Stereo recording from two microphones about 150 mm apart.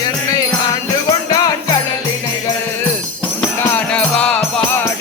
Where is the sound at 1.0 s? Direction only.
20° left (ahead or behind).